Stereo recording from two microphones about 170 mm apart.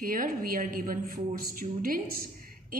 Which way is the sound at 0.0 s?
55° right (ahead or behind).